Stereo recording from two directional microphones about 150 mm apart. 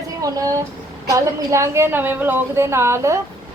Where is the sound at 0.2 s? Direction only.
20° right (ahead or behind).